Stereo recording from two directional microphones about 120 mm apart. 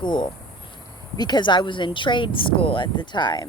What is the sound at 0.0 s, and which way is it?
Speech, 40° left (ahead or behind).